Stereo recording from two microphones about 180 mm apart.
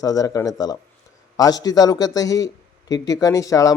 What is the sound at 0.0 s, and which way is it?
Speech, 20° left (ahead or behind).